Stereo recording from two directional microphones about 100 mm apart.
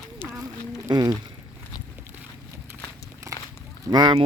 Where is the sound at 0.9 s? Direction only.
40° right (ahead or behind).